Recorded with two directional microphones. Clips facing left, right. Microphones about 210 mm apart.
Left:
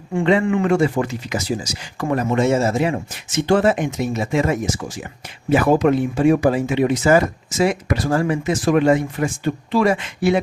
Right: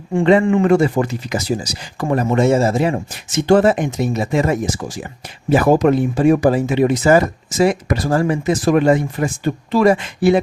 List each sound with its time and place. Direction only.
0.2 s speech: 40° right (ahead or behind)